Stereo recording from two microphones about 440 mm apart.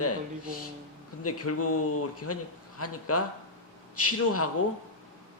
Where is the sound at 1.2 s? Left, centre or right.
Left.